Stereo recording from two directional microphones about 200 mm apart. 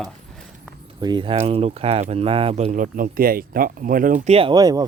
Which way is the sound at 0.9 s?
20° right (ahead or behind).